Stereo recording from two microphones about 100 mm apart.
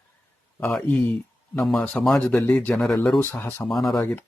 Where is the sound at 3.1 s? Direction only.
20° left (ahead or behind).